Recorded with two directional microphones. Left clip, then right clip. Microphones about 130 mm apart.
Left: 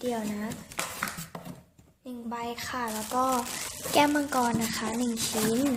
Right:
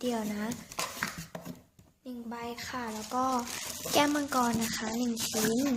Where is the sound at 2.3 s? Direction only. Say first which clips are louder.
Left 5 dB; centre (ahead or behind).